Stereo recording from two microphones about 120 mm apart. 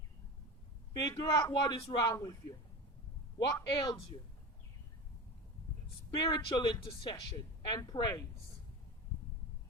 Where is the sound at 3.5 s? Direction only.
30° left (ahead or behind).